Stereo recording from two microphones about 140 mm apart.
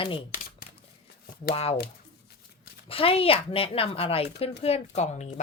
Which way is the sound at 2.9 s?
40° left (ahead or behind).